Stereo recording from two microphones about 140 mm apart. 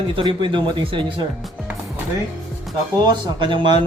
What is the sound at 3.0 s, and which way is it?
Speech, 30° right (ahead or behind).